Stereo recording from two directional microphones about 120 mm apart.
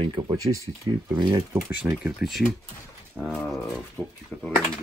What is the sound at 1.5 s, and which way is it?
Speech, 20° right (ahead or behind).